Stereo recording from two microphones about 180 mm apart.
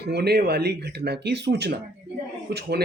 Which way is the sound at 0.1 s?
60° right (ahead or behind).